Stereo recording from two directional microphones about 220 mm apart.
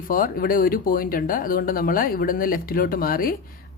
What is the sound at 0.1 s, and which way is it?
Speech, 40° left (ahead or behind).